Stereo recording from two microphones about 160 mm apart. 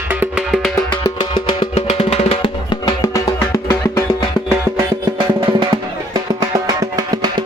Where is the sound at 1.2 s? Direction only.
35° left (ahead or behind).